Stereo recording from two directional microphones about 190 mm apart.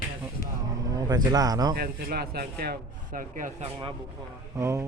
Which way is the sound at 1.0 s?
20° right (ahead or behind).